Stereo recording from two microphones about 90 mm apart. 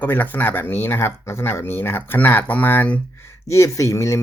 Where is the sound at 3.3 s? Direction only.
35° left (ahead or behind).